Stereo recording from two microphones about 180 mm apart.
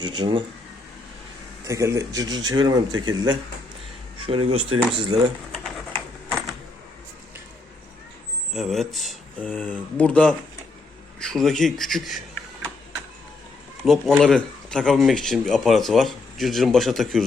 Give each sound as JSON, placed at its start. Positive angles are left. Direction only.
{"t": 0.0, "sound": "speech", "side_deg": -25}
{"t": 1.6, "sound": "speech", "side_deg": -15}
{"t": 8.5, "sound": "speech", "side_deg": 0}
{"t": 13.8, "sound": "speech", "side_deg": -5}